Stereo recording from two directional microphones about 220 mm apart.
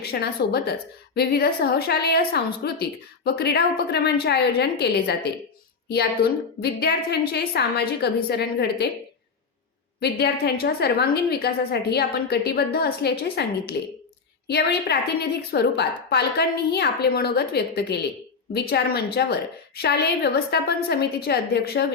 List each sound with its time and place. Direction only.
0.0 s a woman's voice: 45° left (ahead or behind)
10.0 s a woman's voice: 45° left (ahead or behind)